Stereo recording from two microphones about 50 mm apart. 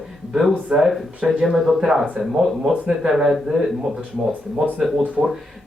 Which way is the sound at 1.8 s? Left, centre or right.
Centre.